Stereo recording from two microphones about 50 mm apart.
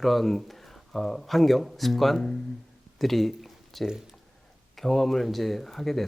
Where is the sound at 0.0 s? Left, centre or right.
Centre.